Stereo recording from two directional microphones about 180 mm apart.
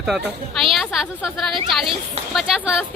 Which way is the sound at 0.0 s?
Centre (ahead or behind).